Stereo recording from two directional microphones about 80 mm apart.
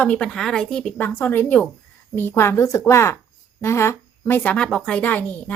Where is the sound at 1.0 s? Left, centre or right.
Left.